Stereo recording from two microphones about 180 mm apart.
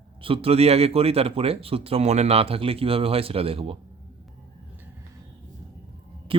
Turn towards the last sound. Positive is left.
turn(degrees=-30)  # may be behind; listen again after turning